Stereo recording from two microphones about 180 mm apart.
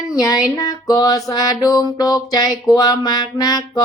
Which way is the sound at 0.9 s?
20° left (ahead or behind).